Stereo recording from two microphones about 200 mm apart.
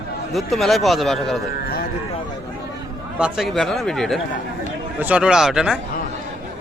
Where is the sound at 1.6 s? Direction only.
50° left (ahead or behind).